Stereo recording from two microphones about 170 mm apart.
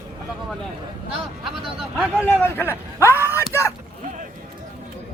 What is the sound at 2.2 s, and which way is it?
Speech, 10° left (ahead or behind).